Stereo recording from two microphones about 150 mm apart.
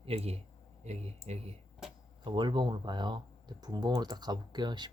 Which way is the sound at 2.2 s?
30° right (ahead or behind).